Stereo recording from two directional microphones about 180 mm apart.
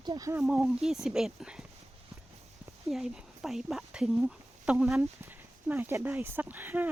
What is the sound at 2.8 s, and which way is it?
Speech, centre (ahead or behind).